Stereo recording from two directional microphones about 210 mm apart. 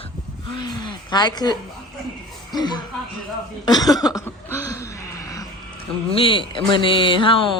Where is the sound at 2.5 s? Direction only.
20° left (ahead or behind).